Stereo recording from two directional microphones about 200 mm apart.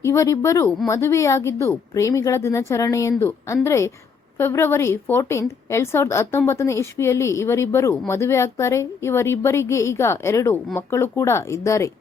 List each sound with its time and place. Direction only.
0.0 s a woman's voice: 15° left (ahead or behind)